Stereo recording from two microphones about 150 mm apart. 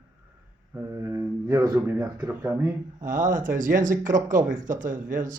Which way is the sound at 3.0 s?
60° right (ahead or behind).